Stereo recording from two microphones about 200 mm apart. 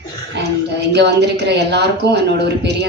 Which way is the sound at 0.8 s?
60° right (ahead or behind).